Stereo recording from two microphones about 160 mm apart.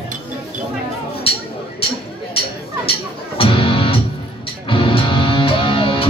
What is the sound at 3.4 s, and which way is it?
Music, 35° left (ahead or behind).